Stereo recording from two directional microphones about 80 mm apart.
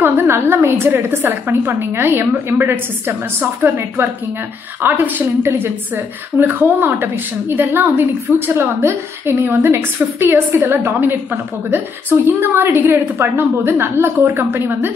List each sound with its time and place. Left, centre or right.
0.0 s a woman's voice: right